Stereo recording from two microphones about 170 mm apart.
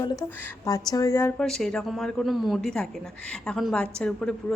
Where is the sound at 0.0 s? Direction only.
20° left (ahead or behind).